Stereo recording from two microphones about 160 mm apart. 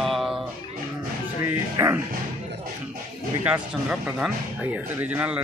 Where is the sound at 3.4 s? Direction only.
10° right (ahead or behind).